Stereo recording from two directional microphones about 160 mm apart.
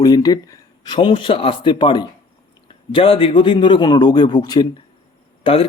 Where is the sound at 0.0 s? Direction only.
25° left (ahead or behind).